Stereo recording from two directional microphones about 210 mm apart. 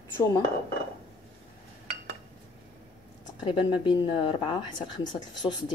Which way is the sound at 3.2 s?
25° left (ahead or behind).